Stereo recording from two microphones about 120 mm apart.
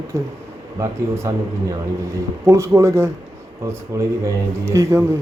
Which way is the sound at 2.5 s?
25° right (ahead or behind).